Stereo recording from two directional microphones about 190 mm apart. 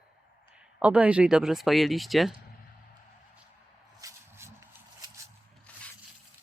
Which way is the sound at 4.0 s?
15° right (ahead or behind).